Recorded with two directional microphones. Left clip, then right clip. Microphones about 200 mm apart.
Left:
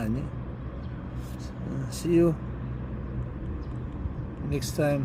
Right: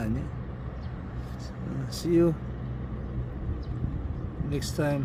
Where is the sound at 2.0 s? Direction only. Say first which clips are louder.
Left 1 dB; centre (ahead or behind).